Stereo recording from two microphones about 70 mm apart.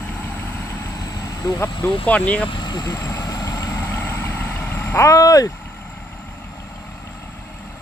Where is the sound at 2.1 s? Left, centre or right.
Centre.